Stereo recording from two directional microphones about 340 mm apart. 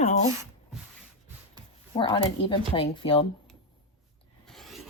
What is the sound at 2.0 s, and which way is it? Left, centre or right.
Speech, centre.